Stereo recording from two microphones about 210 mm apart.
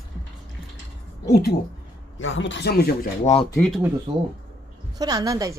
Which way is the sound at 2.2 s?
65° left (ahead or behind).